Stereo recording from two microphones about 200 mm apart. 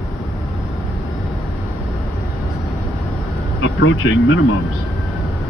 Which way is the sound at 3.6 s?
75° left (ahead or behind).